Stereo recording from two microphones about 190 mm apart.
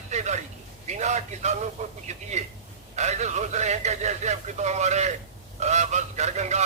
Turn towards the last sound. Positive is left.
turn(degrees=-35)  # may be behind; listen again after turning